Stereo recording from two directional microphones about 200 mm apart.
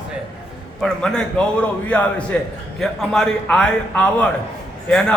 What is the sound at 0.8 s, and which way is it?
A man's voice, 5° left (ahead or behind).